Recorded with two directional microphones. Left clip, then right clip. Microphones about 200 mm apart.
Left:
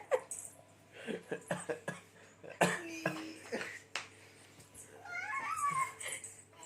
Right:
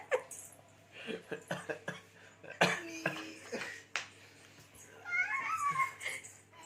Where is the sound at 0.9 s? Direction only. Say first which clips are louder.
Even; 20° left (ahead or behind).